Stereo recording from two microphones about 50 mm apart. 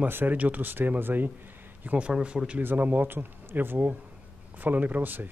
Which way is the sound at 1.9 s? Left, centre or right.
Right.